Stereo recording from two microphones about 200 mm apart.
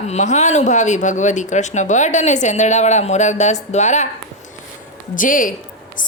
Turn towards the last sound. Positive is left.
turn(degrees=40)  # may be behind; listen again after turning